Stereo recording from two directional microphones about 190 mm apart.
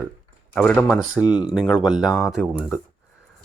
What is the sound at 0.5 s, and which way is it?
Speech, 5° left (ahead or behind).